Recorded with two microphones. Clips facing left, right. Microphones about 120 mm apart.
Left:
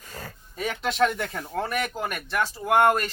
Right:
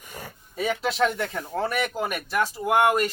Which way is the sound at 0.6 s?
Centre (ahead or behind).